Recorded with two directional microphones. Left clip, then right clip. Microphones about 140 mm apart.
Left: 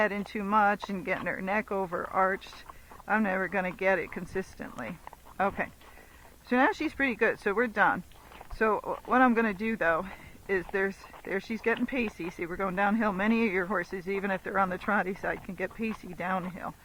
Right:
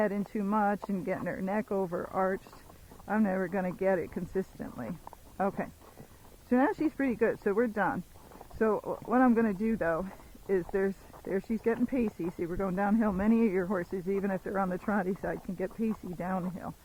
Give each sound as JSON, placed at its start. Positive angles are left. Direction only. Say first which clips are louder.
{"t": 0.0, "sound": "speech", "louder": "left 2 dB", "side_deg": 30}